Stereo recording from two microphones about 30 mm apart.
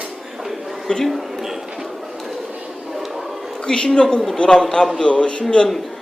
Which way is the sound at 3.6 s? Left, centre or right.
Left.